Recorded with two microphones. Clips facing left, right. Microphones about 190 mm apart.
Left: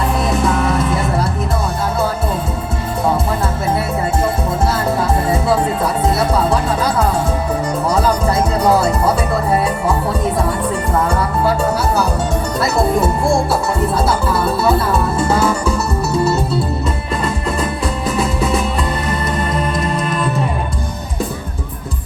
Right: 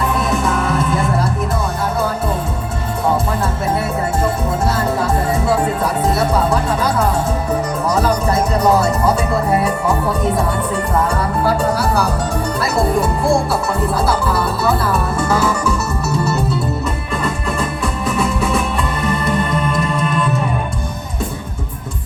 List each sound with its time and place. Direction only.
13.9 s music: 25° left (ahead or behind)
19.5 s music: 30° left (ahead or behind)